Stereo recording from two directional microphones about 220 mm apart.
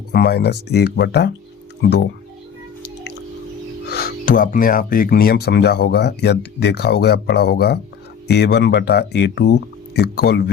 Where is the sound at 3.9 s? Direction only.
40° left (ahead or behind).